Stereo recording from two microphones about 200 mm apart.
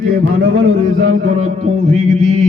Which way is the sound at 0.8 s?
40° right (ahead or behind).